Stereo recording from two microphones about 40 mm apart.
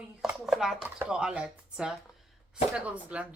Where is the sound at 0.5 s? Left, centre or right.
Centre.